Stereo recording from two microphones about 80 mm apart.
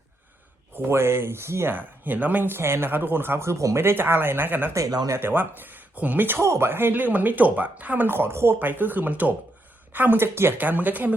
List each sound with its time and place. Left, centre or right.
0.8 s speech: right
1.7 s speech: right
3.8 s speech: right
4.7 s speech: right
5.0 s speech: right
6.4 s speech: right